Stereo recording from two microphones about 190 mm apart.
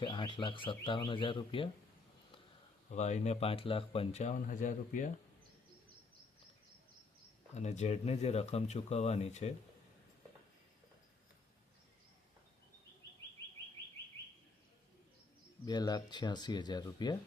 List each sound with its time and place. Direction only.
0.0 s speech: 25° left (ahead or behind)
2.9 s speech: 35° left (ahead or behind)
7.5 s speech: 35° left (ahead or behind)
15.6 s speech: 20° left (ahead or behind)